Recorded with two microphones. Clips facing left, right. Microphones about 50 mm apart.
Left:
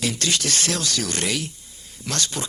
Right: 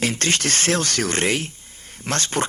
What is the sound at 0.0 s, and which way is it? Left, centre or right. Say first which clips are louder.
Speech: right 3 dB; right.